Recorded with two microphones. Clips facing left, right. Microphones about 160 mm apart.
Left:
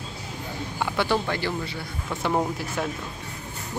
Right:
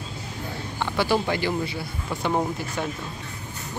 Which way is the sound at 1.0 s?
10° right (ahead or behind).